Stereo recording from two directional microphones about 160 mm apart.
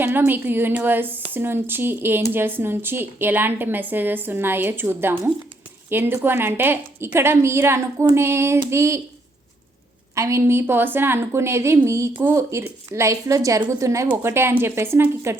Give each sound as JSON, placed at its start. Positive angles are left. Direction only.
{"t": 0.0, "sound": "a woman's voice", "side_deg": -10}
{"t": 10.2, "sound": "a woman's voice", "side_deg": -20}